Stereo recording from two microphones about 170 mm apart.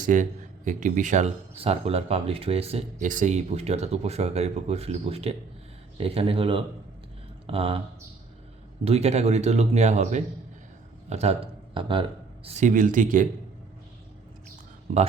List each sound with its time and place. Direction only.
0.0 s speech: 50° right (ahead or behind); by 7.8 s 35° right (ahead or behind)
8.8 s speech: 40° right (ahead or behind)
12.5 s speech: 45° right (ahead or behind)